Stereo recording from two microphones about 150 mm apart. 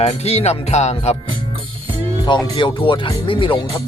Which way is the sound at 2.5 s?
35° left (ahead or behind).